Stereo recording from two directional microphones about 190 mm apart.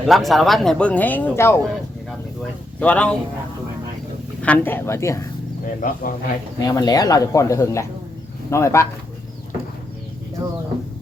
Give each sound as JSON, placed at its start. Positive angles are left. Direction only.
{"t": 0.0, "sound": "speech", "side_deg": 0}
{"t": 2.8, "sound": "speech", "side_deg": 5}
{"t": 4.4, "sound": "speech", "side_deg": 10}
{"t": 5.6, "sound": "speech", "side_deg": 45}
{"t": 6.6, "sound": "speech", "side_deg": 20}